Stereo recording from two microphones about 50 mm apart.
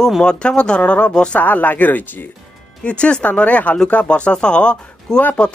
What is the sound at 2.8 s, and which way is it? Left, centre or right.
A woman's voice, left.